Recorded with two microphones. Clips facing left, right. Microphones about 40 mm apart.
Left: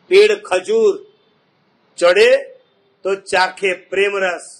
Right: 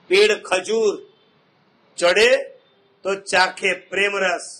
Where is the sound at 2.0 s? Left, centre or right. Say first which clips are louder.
Left 4 dB; centre.